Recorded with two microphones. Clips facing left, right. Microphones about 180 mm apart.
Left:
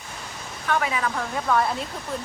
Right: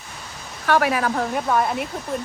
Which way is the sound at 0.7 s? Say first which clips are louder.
Right 6 dB; 70° right (ahead or behind).